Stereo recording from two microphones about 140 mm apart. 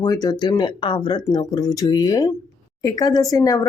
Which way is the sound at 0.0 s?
25° left (ahead or behind).